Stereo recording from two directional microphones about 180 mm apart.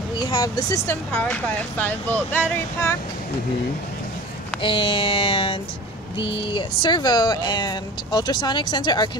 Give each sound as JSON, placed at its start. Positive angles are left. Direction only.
{"t": 0.2, "sound": "speech", "side_deg": 25}
{"t": 1.1, "sound": "speech", "side_deg": 10}
{"t": 4.6, "sound": "speech", "side_deg": 30}